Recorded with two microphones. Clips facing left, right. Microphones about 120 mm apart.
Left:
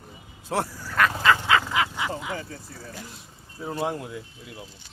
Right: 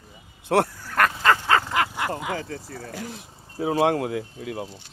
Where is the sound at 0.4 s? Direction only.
60° right (ahead or behind); by 4.6 s 80° right.